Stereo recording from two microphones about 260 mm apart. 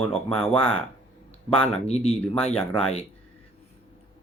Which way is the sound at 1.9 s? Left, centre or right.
Left.